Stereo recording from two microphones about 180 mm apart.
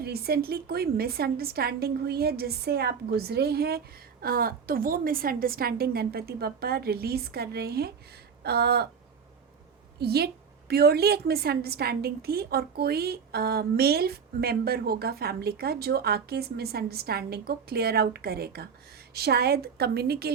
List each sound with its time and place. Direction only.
0.0 s a woman's voice: 60° right (ahead or behind)
10.0 s a woman's voice: 60° right (ahead or behind)